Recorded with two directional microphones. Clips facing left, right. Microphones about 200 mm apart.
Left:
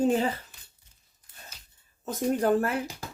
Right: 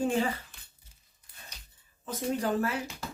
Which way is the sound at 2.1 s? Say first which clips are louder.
Left 6 dB; 50° left (ahead or behind).